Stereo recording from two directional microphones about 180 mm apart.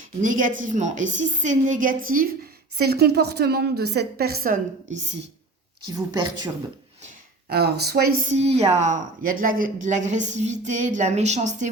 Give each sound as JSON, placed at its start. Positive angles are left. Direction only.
{"t": 0.2, "sound": "speech", "side_deg": -45}
{"t": 2.7, "sound": "a woman's voice", "side_deg": -60}
{"t": 5.9, "sound": "speech", "side_deg": -20}
{"t": 7.5, "sound": "speech", "side_deg": -60}